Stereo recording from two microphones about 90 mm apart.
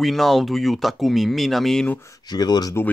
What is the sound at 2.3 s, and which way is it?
Speech, 45° left (ahead or behind).